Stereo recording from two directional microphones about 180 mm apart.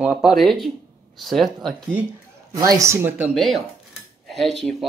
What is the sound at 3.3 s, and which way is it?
Speech, centre (ahead or behind).